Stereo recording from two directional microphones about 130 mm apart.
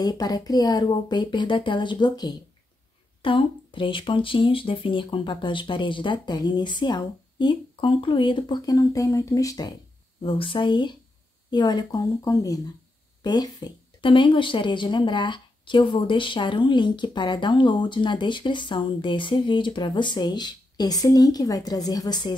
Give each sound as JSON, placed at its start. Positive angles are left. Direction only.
{"t": 0.0, "sound": "a woman's voice", "side_deg": 30}
{"t": 10.2, "sound": "a woman's voice", "side_deg": 45}